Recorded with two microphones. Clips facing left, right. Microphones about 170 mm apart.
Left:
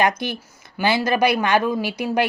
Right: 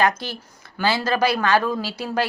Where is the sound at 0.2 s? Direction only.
15° left (ahead or behind).